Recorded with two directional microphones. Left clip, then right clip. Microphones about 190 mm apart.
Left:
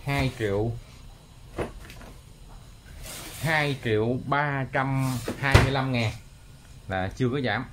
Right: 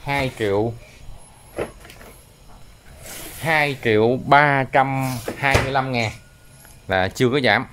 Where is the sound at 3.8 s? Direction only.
50° right (ahead or behind).